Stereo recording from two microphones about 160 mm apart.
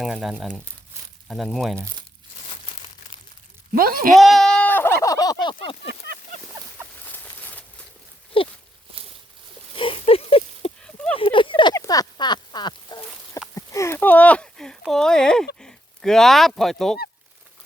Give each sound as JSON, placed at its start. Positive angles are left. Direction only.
{"t": 0.0, "sound": "speech", "side_deg": 0}
{"t": 3.7, "sound": "speech", "side_deg": -65}
{"t": 4.1, "sound": "speech", "side_deg": 0}
{"t": 7.0, "sound": "patter", "side_deg": 10}
{"t": 8.3, "sound": "walk", "side_deg": 35}
{"t": 9.7, "sound": "a sound", "side_deg": 35}
{"t": 10.8, "sound": "a sound", "side_deg": 5}
{"t": 11.2, "sound": "a sound", "side_deg": 30}
{"t": 15.5, "sound": "speech", "side_deg": 5}